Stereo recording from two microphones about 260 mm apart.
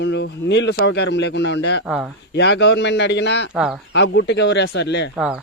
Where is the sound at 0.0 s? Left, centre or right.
Left.